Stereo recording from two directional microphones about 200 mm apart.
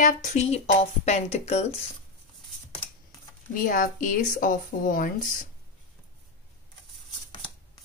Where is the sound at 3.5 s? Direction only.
45° left (ahead or behind).